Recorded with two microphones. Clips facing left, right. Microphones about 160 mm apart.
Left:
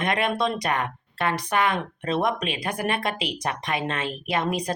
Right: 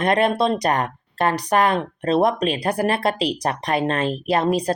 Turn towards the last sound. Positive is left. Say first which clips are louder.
# right 6 dB
turn(degrees=-35)  # may be behind; listen again after turning